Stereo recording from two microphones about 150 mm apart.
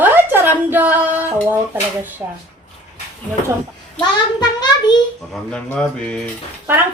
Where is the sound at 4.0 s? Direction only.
30° left (ahead or behind).